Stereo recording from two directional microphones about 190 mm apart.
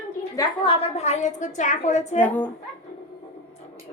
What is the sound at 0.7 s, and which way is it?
A woman's voice, 35° left (ahead or behind).